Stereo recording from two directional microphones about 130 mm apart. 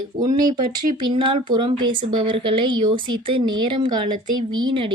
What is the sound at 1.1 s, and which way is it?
Speech, 40° right (ahead or behind).